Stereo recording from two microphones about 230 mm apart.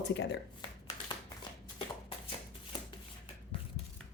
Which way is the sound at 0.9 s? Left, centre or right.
Centre.